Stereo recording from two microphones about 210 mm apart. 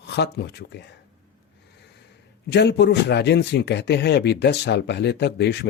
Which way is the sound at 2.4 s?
55° left (ahead or behind).